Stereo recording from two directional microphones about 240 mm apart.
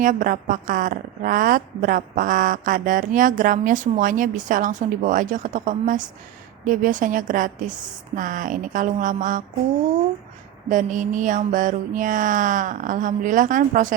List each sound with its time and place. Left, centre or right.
0.0 s a woman's voice: right
10.7 s a woman's voice: right